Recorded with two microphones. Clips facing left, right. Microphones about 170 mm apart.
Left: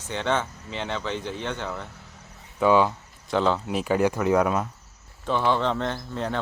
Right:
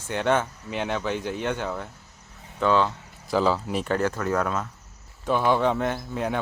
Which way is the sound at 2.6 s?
10° left (ahead or behind).